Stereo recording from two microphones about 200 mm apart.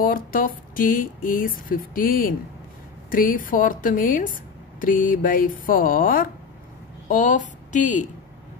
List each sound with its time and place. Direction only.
0.0 s speech: 45° left (ahead or behind)